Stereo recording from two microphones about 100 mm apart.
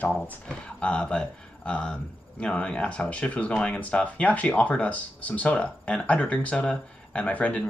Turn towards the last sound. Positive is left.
turn(degrees=15)  # may be behind; listen again after turning